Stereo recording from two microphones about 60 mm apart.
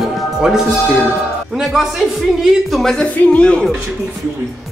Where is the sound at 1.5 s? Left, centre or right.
Centre.